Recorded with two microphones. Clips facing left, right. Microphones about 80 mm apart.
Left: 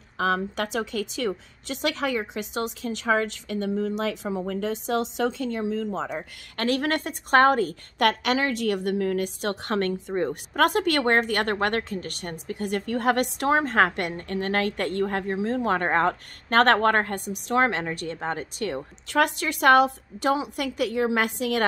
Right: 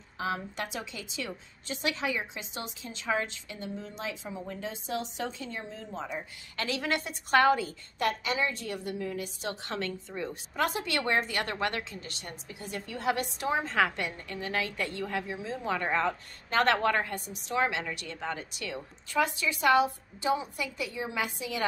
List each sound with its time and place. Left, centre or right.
0.2 s speech: left
6.5 s a woman's voice: left
19.0 s a woman's voice: left